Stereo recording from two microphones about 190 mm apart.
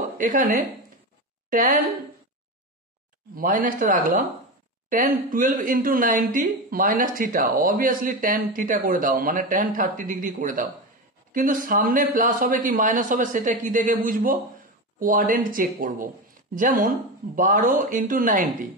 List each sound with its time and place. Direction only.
0.2 s speech: 45° right (ahead or behind)
3.3 s speech: 45° right (ahead or behind)